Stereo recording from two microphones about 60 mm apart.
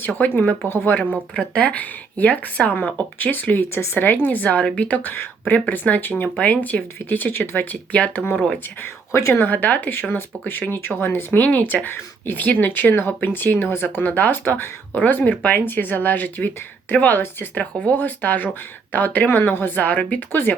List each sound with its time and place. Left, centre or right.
0.0 s speech: left
1.4 s speech: left
4.4 s speech: centre
5.1 s speech: left
7.9 s speech: left
9.1 s speech: left
9.4 s speech: left
20.3 s speech: left